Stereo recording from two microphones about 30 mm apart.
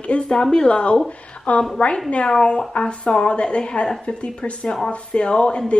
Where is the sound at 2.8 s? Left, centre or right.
Left.